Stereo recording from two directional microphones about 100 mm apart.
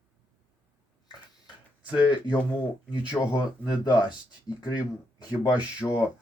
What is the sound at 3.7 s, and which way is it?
Speech, 50° left (ahead or behind).